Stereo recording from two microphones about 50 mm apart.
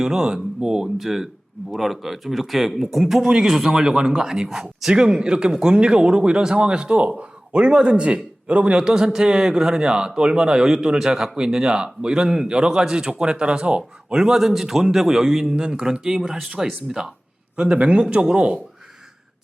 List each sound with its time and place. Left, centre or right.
0.0 s a man's voice: centre
14.2 s a man's voice: centre
17.6 s speech: right